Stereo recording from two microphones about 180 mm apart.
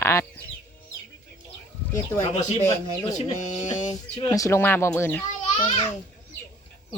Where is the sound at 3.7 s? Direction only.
40° left (ahead or behind).